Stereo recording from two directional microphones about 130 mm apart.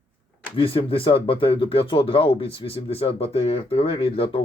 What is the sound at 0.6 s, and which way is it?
Speech, 45° left (ahead or behind).